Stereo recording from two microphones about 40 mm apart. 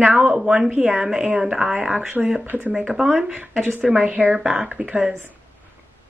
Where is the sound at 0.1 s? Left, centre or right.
Right.